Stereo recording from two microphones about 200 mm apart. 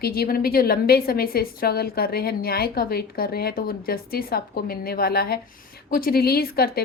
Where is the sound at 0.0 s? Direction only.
50° left (ahead or behind).